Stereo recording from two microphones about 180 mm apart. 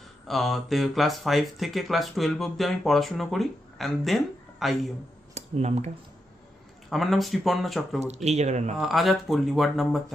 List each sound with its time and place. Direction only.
0.3 s speech: centre (ahead or behind)
5.3 s speech: 40° right (ahead or behind)
6.9 s speech: centre (ahead or behind)
7.9 s speech: 40° right (ahead or behind)
8.8 s speech: centre (ahead or behind)